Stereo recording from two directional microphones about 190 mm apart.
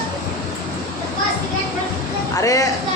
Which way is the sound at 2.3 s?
15° left (ahead or behind).